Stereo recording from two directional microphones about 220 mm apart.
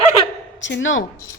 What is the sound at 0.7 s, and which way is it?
Speech, 60° left (ahead or behind).